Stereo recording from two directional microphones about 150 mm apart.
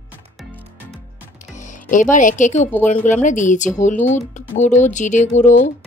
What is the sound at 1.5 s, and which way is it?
Speech, 55° left (ahead or behind).